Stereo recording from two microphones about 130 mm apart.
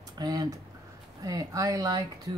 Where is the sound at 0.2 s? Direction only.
30° right (ahead or behind).